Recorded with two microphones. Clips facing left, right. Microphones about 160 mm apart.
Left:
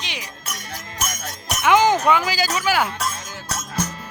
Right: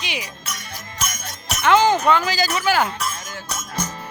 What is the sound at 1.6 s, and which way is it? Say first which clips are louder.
Speech: even; 15° left (ahead or behind).